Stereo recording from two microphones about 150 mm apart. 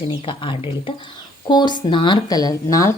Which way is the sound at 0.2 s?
35° left (ahead or behind).